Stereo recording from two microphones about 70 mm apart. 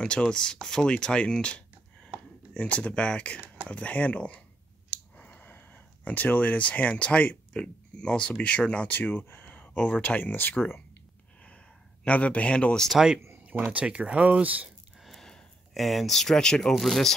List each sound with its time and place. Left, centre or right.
0.0 s speech: centre
5.1 s a sound: left
6.0 s speech: left
12.0 s speech: centre
12.9 s speech: centre
15.0 s speech: centre